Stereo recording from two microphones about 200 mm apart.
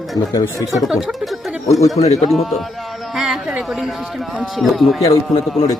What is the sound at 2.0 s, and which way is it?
Speech, 30° left (ahead or behind).